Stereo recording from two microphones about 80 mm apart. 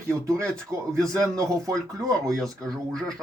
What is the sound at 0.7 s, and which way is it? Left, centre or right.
Speech, right.